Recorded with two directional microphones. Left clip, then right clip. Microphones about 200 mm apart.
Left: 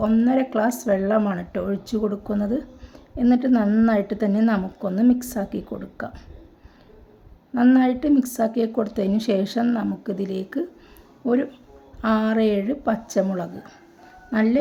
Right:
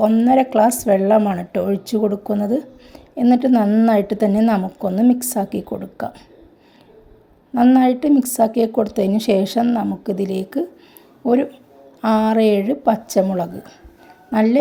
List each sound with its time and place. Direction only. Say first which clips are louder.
0.0 s a woman's voice: right 7 dB; 10° right (ahead or behind)
7.5 s a woman's voice: right 5 dB; 10° right (ahead or behind)
12.0 s a woman's voice: right 6 dB; 10° right (ahead or behind)